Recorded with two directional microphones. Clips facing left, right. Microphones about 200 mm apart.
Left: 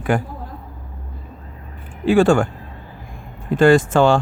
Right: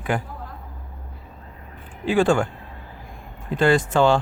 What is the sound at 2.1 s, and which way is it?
Speech, 45° left (ahead or behind).